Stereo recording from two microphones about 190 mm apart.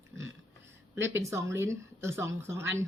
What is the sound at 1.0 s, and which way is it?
Speech, 15° right (ahead or behind).